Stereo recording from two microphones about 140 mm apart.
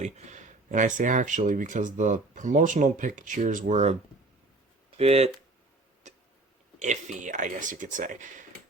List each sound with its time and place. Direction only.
0.0 s speech: 60° right (ahead or behind)
4.9 s speech: 45° right (ahead or behind)
6.0 s a sound: 60° right (ahead or behind)
6.7 s speech: 55° right (ahead or behind)